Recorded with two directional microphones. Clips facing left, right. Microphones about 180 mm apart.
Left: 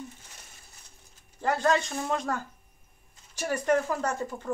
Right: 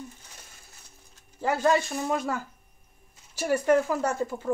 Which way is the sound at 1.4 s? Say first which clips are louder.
Right 2 dB; 15° right (ahead or behind).